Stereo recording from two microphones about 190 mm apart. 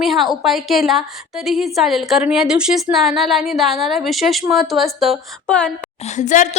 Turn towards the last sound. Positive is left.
turn(degrees=40)  # may be behind; listen again after turning